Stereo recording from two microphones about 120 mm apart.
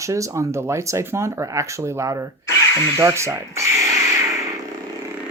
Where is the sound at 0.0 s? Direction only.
25° right (ahead or behind).